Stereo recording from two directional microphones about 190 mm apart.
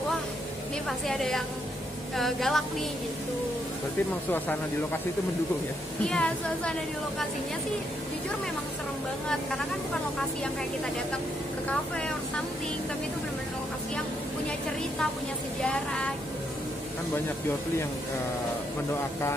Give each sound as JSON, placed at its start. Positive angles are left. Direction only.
{"t": 0.8, "sound": "a woman's voice", "side_deg": 0}
{"t": 6.0, "sound": "a woman's voice", "side_deg": 5}
{"t": 15.7, "sound": "a woman's voice", "side_deg": 5}